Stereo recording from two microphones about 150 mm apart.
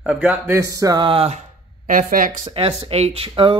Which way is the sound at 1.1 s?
40° right (ahead or behind).